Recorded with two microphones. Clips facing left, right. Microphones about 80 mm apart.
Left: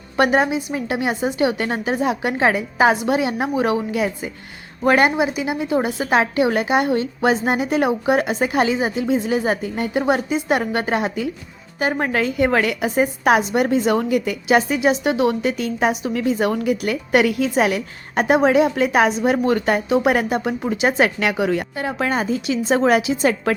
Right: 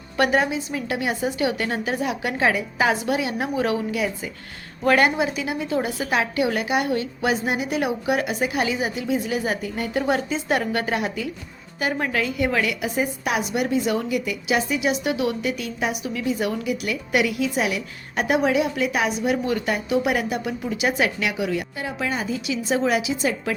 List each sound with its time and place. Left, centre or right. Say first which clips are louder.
0.2 s a woman's voice: left 3 dB; left